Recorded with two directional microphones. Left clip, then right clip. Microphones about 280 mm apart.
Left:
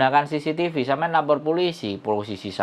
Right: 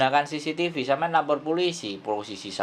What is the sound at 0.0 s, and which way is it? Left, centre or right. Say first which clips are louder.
Speech: left 3 dB; left.